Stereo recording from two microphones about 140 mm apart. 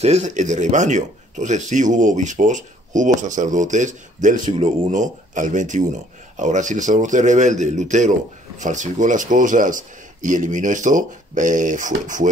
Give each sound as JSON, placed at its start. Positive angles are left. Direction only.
{"t": 0.0, "sound": "speech", "side_deg": -55}